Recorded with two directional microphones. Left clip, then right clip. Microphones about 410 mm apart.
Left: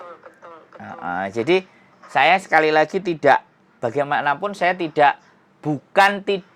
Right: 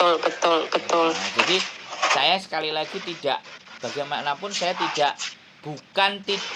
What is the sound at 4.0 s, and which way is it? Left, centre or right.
Speech, left.